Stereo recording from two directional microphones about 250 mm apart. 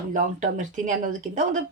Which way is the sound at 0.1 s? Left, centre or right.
Right.